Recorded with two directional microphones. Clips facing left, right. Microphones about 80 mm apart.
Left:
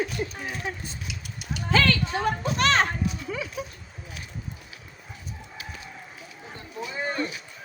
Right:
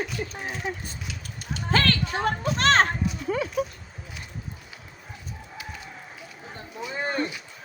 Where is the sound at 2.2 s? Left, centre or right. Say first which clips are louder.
Right 2 dB; right.